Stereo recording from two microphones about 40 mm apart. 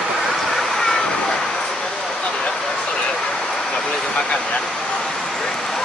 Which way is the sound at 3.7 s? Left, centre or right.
Centre.